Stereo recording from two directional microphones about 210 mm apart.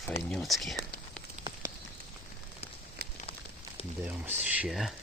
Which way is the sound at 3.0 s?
45° right (ahead or behind).